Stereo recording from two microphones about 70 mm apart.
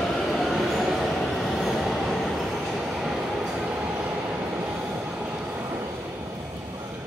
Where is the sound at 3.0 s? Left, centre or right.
Centre.